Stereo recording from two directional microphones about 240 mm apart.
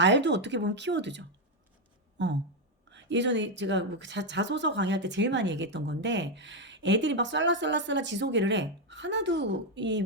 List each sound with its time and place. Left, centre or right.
0.0 s a woman's voice: right
2.1 s a sound: right
2.9 s a woman's voice: right